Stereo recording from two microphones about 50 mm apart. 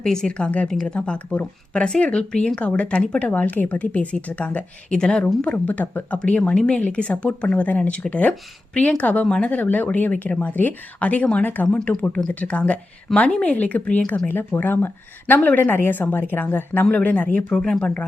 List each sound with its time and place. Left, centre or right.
0.0 s speech: centre
0.7 s speech: centre
0.9 s speech: left
10.4 s speech: left
14.3 s speech: left
16.9 s speech: left
17.5 s speech: centre